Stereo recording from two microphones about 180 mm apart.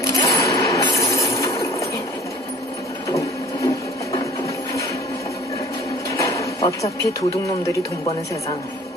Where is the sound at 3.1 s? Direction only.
20° left (ahead or behind).